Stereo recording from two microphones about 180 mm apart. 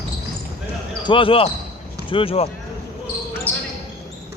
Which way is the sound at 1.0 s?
30° left (ahead or behind).